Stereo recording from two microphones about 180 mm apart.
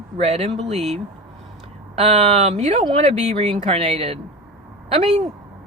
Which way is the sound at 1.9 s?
35° right (ahead or behind).